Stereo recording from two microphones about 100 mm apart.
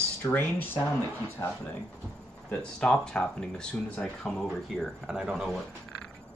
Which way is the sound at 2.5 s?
10° left (ahead or behind).